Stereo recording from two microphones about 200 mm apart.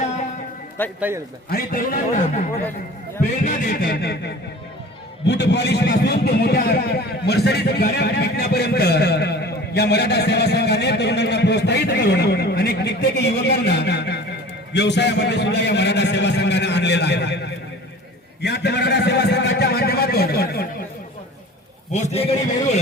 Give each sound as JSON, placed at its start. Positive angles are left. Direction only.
{"t": 0.9, "sound": "a man's voice", "side_deg": -10}
{"t": 1.5, "sound": "a man's voice", "side_deg": 45}
{"t": 18.4, "sound": "a sound", "side_deg": 55}
{"t": 21.9, "sound": "a man's voice", "side_deg": 35}